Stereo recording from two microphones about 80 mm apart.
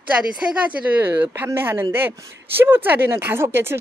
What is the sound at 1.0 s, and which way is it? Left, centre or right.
Speech, right.